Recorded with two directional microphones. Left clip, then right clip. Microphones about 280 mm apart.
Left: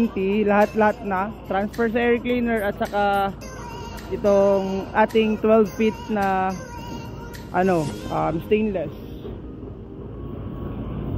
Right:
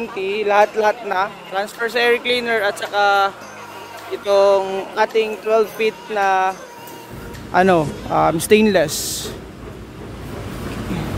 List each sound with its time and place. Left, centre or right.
0.3 s speech: centre
7.5 s speech: centre